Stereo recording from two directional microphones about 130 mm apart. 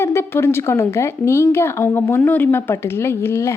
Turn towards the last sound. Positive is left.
turn(degrees=20)  # may be behind; listen again after turning